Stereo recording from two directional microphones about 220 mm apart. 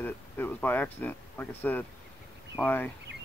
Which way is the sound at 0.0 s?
10° left (ahead or behind).